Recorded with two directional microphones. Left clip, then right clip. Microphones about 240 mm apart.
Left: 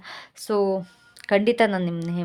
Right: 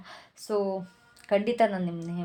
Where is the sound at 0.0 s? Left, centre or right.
Left.